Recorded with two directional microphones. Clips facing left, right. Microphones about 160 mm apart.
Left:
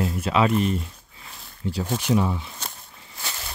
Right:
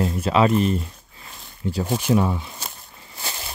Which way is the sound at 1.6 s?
50° right (ahead or behind).